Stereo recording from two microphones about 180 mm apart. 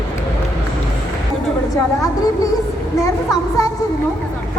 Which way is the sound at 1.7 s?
20° left (ahead or behind).